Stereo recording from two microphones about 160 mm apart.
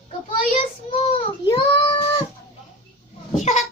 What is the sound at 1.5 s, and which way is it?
Child singing, 30° left (ahead or behind).